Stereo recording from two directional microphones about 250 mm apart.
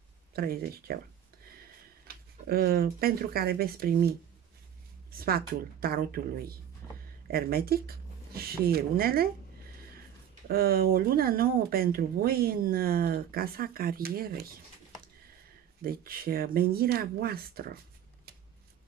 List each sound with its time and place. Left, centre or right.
0.3 s speech: right
2.4 s speech: right
5.1 s speech: right
10.5 s speech: right
15.8 s speech: right